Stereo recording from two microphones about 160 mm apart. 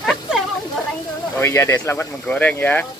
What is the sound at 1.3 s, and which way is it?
Speech, 15° left (ahead or behind).